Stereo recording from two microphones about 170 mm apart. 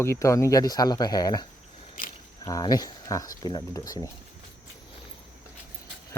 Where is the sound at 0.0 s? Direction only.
15° left (ahead or behind).